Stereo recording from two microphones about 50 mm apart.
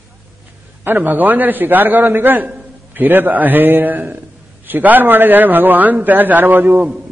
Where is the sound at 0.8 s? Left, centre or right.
Right.